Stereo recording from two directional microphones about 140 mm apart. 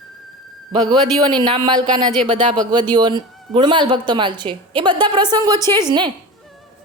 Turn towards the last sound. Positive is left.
turn(degrees=-30)  # may be behind; listen again after turning